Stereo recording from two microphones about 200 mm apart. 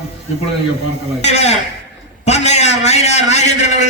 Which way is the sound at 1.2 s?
35° left (ahead or behind).